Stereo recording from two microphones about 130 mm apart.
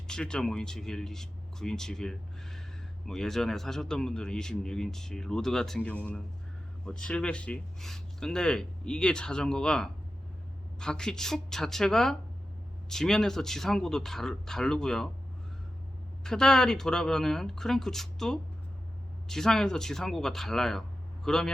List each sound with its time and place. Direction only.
0.1 s a man's voice: 5° left (ahead or behind)
16.2 s a man's voice: 5° left (ahead or behind)